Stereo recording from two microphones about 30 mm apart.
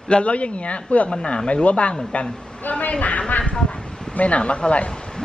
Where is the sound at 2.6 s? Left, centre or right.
Left.